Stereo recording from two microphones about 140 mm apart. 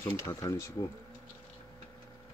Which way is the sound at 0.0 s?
25° left (ahead or behind).